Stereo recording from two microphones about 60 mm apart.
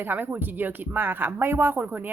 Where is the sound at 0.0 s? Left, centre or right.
Right.